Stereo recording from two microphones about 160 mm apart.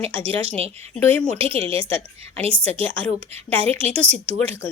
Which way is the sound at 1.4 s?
35° right (ahead or behind).